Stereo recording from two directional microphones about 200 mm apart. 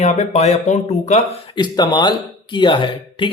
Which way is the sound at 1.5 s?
20° left (ahead or behind).